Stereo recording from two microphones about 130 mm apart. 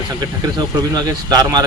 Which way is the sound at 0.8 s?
30° right (ahead or behind).